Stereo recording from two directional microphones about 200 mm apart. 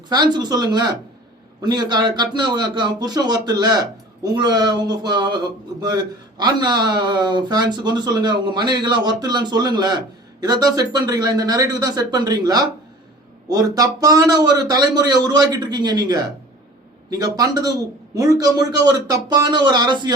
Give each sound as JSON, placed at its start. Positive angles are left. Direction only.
{"t": 0.1, "sound": "speech", "side_deg": -20}